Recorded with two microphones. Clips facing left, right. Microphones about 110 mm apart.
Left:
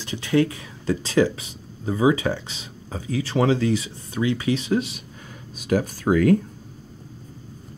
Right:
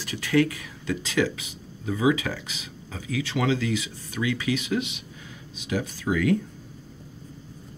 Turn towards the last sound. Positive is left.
turn(degrees=45)  # may be behind; listen again after turning